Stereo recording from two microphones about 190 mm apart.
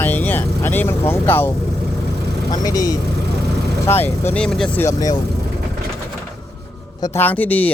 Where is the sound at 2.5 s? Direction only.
20° left (ahead or behind).